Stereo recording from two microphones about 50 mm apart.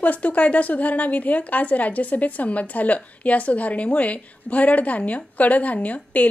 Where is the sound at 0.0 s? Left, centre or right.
Left.